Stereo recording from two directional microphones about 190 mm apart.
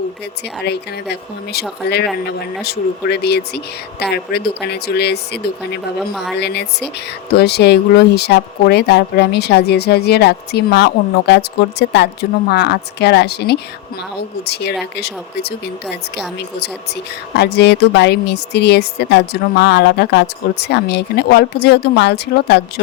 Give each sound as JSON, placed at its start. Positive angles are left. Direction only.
{"t": 0.6, "sound": "speech", "side_deg": 60}
{"t": 6.0, "sound": "a woman's voice", "side_deg": 0}
{"t": 6.3, "sound": "speech", "side_deg": 60}